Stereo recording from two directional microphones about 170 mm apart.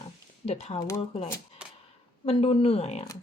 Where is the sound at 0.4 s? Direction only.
40° left (ahead or behind).